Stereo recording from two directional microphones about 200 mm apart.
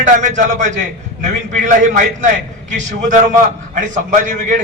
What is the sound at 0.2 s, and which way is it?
A man's voice, 40° right (ahead or behind).